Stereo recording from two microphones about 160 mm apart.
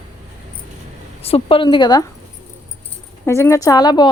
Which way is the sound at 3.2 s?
15° left (ahead or behind).